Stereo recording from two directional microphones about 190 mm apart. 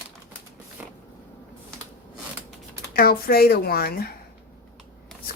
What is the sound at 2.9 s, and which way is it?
Speech, 50° left (ahead or behind).